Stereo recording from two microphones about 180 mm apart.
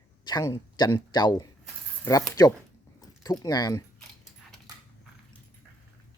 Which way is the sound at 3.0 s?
20° left (ahead or behind).